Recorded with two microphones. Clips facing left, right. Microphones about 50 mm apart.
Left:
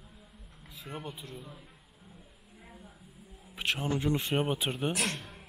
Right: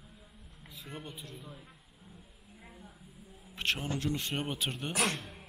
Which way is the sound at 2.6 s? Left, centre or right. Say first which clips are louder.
Left 1 dB; centre.